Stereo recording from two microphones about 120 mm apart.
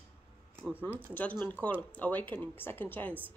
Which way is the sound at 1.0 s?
10° left (ahead or behind).